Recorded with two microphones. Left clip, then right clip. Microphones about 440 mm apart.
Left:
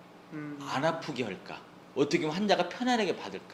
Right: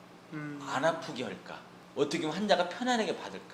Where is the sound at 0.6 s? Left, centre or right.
Left.